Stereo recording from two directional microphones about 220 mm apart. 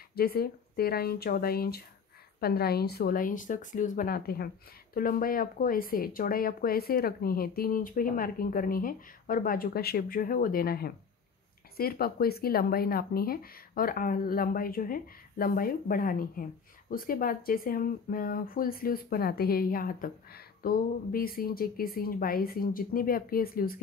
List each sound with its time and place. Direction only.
0.1 s speech: 45° left (ahead or behind)